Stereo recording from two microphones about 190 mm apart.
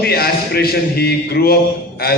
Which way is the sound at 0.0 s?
55° left (ahead or behind).